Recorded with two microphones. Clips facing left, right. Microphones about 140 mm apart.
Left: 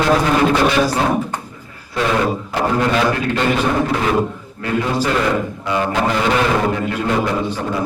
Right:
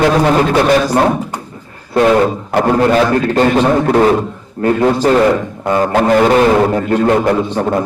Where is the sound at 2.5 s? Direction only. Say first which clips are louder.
Right 7 dB; 55° right (ahead or behind).